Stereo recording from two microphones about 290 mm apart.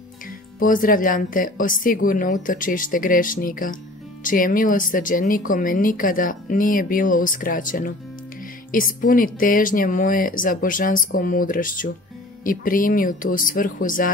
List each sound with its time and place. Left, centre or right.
0.6 s speech: left